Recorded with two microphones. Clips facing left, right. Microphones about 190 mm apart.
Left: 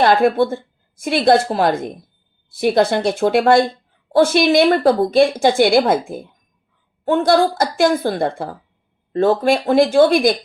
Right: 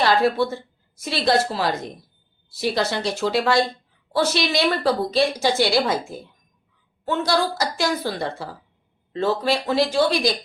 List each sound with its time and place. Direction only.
0.0 s a woman's voice: 50° left (ahead or behind)